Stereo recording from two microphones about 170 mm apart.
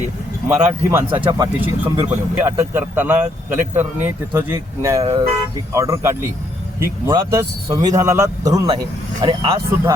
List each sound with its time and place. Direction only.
0.4 s speech: 15° right (ahead or behind)
1.6 s speech: 10° right (ahead or behind)